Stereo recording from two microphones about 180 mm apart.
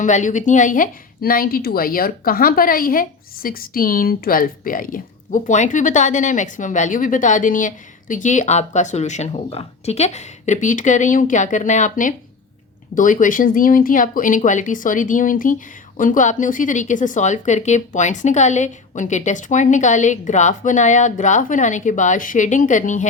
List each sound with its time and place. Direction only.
0.0 s a woman's voice: 45° left (ahead or behind)